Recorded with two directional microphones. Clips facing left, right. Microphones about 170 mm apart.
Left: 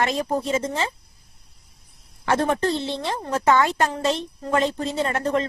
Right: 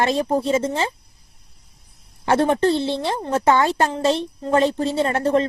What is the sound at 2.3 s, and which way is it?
A woman's voice, 30° right (ahead or behind).